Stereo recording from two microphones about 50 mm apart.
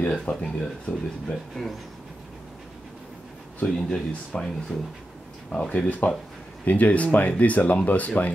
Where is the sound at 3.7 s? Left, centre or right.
Centre.